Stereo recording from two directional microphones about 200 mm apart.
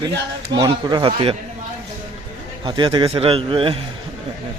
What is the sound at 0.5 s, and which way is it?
Speech, 20° right (ahead or behind).